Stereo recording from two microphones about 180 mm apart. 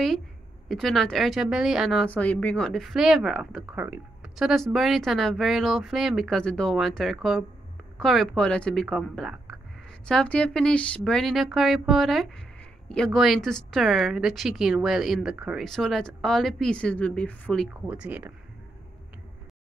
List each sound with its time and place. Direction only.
0.7 s speech: centre (ahead or behind)
17.8 s speech: 10° right (ahead or behind)